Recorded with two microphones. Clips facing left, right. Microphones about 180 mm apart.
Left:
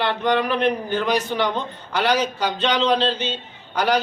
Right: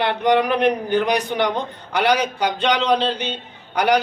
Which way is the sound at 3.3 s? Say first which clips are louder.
Right 2 dB; 60° right (ahead or behind).